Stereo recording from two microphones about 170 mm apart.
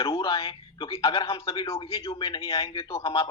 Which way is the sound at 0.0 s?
30° left (ahead or behind).